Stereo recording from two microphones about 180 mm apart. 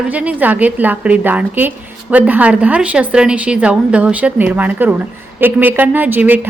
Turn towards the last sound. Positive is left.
turn(degrees=-10)  # may be behind; listen again after turning